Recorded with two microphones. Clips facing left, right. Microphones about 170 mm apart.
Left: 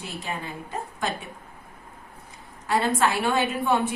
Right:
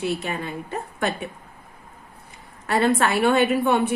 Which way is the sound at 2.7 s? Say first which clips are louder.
Right 3 dB; 65° right (ahead or behind).